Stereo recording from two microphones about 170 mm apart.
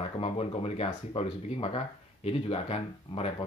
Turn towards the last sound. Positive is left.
turn(degrees=35)  # may be behind; listen again after turning